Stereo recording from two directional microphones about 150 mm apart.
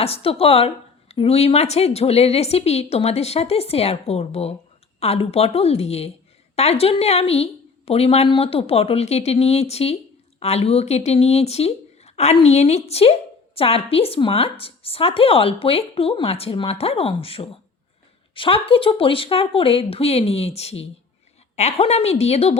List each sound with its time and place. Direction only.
0.0 s speech: 40° left (ahead or behind)